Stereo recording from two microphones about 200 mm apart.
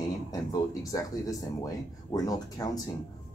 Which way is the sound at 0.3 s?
15° left (ahead or behind).